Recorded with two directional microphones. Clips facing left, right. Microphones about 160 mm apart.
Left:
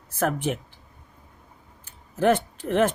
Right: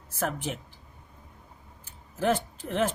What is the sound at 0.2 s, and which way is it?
Speech, 60° left (ahead or behind).